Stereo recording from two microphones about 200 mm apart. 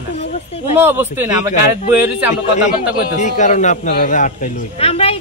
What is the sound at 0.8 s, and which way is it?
Speech, 10° right (ahead or behind).